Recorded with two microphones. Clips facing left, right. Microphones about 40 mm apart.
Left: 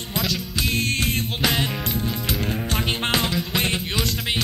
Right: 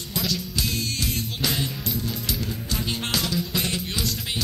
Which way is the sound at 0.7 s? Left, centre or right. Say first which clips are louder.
Left 8 dB; left.